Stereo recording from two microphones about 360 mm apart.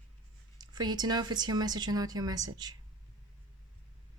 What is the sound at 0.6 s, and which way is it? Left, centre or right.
A woman's voice, centre.